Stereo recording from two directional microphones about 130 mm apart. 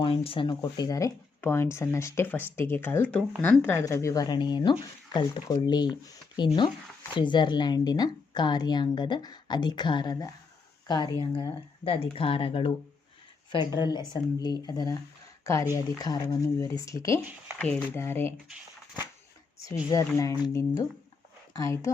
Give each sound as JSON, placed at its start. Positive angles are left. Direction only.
{"t": 0.0, "sound": "a woman's voice", "side_deg": 45}
{"t": 3.7, "sound": "a woman's voice", "side_deg": 20}
{"t": 12.1, "sound": "a woman's voice", "side_deg": 45}
{"t": 17.6, "sound": "speech", "side_deg": 10}
{"t": 19.9, "sound": "speech", "side_deg": 25}